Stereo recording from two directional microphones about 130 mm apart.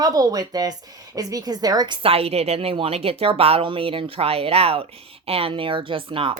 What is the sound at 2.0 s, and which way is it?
A woman's voice, 50° right (ahead or behind).